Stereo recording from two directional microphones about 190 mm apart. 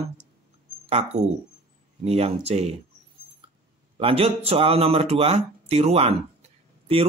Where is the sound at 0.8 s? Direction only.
35° right (ahead or behind).